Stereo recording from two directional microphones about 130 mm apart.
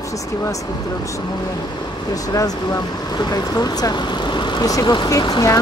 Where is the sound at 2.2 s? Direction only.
30° left (ahead or behind).